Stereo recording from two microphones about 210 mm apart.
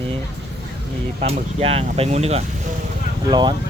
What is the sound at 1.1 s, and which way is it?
Speech, 30° right (ahead or behind).